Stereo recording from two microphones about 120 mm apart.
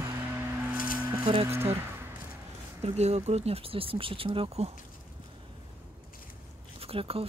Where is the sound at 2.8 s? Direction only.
65° right (ahead or behind).